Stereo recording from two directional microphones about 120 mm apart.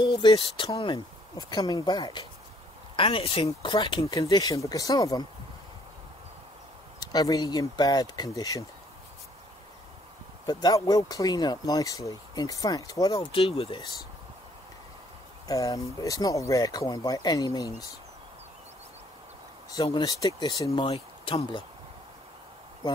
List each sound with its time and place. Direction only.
0.0 s speech: 45° left (ahead or behind)
1.3 s speech: 30° left (ahead or behind)
3.0 s speech: 50° left (ahead or behind)
4.0 s speech: 30° left (ahead or behind)
7.0 s speech: 35° left (ahead or behind)
10.4 s speech: 35° left (ahead or behind)
13.3 s speech: 50° left (ahead or behind)
15.4 s speech: 30° left (ahead or behind)
19.7 s speech: 35° left (ahead or behind)
20.8 s speech: 55° left (ahead or behind)